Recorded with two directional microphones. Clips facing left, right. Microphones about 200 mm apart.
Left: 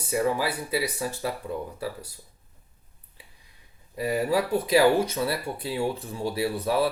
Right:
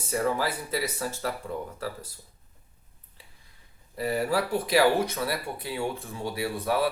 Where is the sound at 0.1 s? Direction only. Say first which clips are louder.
Left 2 dB; 10° left (ahead or behind).